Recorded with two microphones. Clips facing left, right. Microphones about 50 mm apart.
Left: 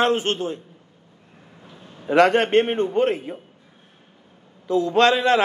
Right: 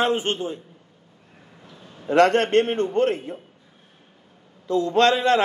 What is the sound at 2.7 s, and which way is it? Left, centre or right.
Speech, centre.